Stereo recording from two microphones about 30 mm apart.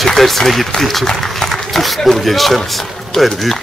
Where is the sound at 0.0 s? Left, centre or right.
Centre.